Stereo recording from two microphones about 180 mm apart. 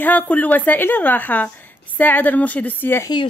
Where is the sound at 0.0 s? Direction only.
10° left (ahead or behind).